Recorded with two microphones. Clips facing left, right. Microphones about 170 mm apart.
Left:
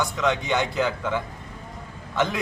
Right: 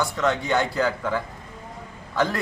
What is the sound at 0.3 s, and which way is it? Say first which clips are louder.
Speech: right 1 dB; 20° left (ahead or behind).